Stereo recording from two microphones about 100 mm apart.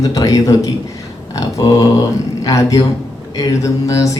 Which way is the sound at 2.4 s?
35° left (ahead or behind).